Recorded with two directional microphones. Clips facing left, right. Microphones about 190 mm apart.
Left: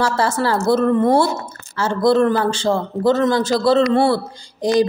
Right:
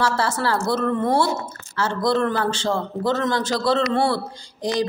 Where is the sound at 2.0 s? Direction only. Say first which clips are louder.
Left 7 dB; 10° left (ahead or behind).